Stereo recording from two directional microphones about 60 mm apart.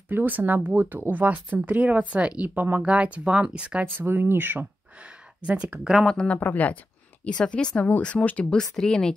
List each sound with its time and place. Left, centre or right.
0.1 s speech: right
2.8 s speech: centre
3.8 s speech: right
5.0 s a sound: right
6.0 s speech: centre
6.4 s speech: left
7.3 s speech: centre